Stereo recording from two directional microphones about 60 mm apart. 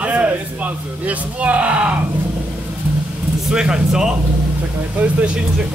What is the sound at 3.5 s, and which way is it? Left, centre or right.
Speech, centre.